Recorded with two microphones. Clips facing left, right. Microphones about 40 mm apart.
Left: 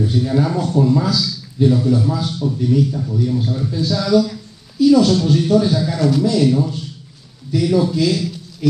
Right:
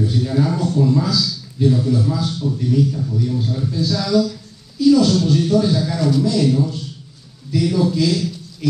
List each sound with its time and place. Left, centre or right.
0.0 s a man's voice: centre
4.2 s a sound: left
4.8 s a man's voice: centre